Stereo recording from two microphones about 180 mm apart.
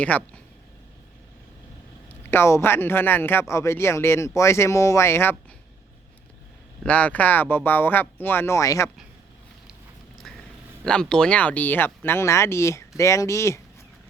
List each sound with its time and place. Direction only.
0.0 s speech: 10° left (ahead or behind)
2.0 s speech: 15° left (ahead or behind)
6.8 s speech: 5° left (ahead or behind)
10.2 s a sound: centre (ahead or behind)
10.8 s speech: 5° left (ahead or behind)